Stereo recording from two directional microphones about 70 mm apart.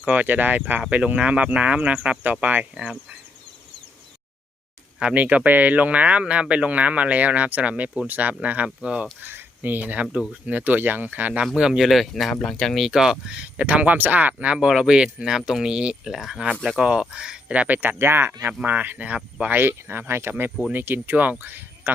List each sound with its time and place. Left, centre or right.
0.0 s speech: right
2.7 s speech: centre
4.9 s speech: centre
9.2 s speech: right; by 10.5 s centre
10.5 s speech: right
11.5 s speech: centre
12.8 s speech: centre; by 18.3 s right
18.4 s speech: right